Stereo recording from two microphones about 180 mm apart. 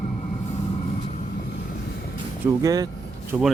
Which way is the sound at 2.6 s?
20° right (ahead or behind).